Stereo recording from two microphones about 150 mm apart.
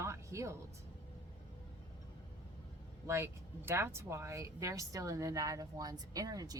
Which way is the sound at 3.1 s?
15° right (ahead or behind).